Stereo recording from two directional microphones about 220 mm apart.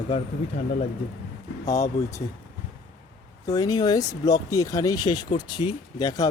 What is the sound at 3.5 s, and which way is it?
Speech, 15° left (ahead or behind).